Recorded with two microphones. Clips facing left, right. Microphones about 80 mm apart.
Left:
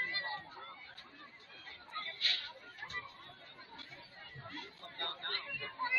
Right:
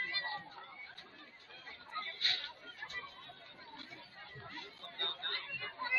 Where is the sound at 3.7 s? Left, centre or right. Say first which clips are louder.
Right 1 dB; centre.